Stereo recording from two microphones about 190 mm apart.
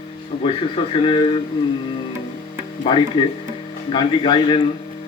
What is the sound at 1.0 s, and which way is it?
Speech, 25° left (ahead or behind).